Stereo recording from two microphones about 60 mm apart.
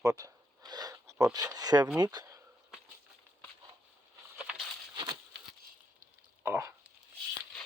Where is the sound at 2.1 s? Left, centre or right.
Right.